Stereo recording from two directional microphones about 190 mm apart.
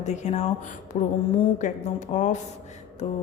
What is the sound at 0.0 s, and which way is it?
A woman's voice, 40° left (ahead or behind).